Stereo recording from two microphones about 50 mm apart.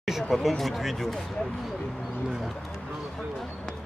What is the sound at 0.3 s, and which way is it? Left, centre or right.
Speech, centre.